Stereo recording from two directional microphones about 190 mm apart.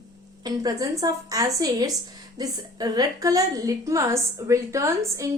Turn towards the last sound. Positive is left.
turn(degrees=-15)  # may be behind; listen again after turning